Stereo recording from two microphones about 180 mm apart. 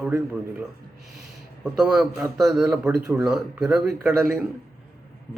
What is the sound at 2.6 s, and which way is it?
Speech, 10° right (ahead or behind).